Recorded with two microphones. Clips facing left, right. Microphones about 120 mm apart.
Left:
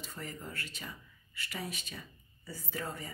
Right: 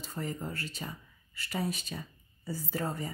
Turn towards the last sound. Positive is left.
turn(degrees=-35)  # may be behind; listen again after turning